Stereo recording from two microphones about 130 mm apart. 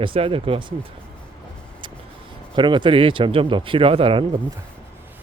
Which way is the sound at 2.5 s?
40° right (ahead or behind).